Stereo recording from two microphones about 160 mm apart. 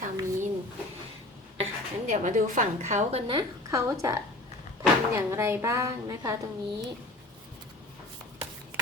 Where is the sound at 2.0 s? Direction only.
55° right (ahead or behind); by 3.9 s 20° right (ahead or behind).